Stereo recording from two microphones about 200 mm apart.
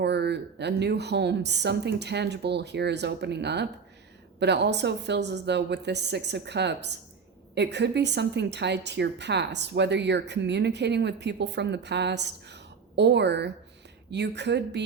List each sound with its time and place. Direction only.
0.0 s a woman's voice: 55° right (ahead or behind)